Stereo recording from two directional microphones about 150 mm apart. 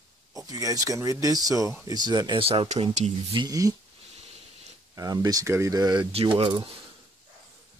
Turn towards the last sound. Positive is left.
turn(degrees=-35)  # may be behind; listen again after turning